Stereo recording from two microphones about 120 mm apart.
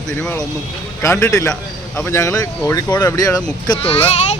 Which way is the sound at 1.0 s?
20° left (ahead or behind).